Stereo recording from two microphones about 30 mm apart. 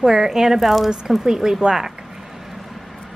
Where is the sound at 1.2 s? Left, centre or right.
Centre.